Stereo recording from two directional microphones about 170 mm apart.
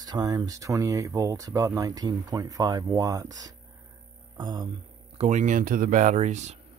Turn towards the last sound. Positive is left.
turn(degrees=-40)  # may be behind; listen again after turning